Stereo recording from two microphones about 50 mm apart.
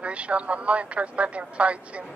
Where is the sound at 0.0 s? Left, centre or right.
Right.